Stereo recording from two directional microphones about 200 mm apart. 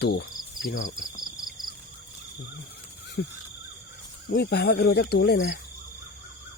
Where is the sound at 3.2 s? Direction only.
55° left (ahead or behind).